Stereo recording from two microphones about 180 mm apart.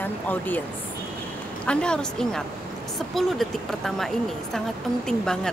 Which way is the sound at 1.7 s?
5° left (ahead or behind).